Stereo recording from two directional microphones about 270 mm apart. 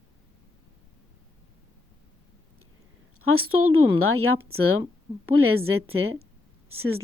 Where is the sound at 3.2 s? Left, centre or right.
Right.